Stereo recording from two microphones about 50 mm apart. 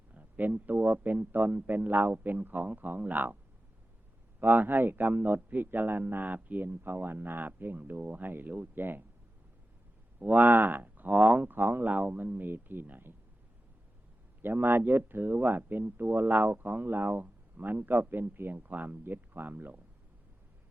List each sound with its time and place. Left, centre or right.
0.1 s a man's voice: right
4.4 s a man's voice: right
10.2 s a man's voice: right
11.9 s a man's voice: right
14.4 s a man's voice: right